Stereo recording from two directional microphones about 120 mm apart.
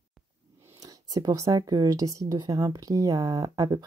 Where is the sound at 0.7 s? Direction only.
30° right (ahead or behind).